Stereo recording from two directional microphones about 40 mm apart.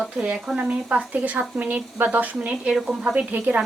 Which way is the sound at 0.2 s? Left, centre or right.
Right.